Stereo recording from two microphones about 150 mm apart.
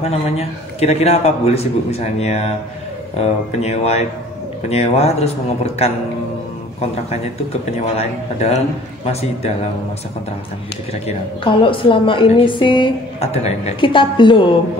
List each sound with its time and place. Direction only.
0.0 s a man's voice: 45° left (ahead or behind)
8.0 s a man's voice: 45° left (ahead or behind)
11.1 s a woman's voice: 35° left (ahead or behind)